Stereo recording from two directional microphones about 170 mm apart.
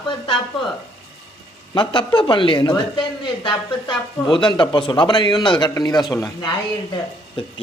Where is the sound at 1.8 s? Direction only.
30° left (ahead or behind).